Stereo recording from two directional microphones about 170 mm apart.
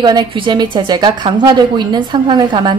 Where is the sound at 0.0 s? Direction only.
25° right (ahead or behind).